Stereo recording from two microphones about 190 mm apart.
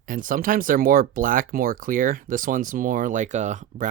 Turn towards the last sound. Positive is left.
turn(degrees=-40)  # may be behind; listen again after turning